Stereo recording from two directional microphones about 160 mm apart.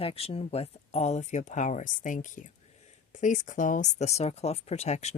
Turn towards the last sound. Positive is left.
turn(degrees=45)  # may be behind; listen again after turning